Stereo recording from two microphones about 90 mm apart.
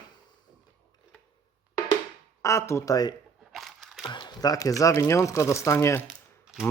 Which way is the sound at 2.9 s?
45° left (ahead or behind).